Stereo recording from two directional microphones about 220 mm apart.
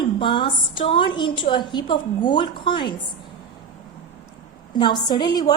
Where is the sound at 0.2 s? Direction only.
20° left (ahead or behind).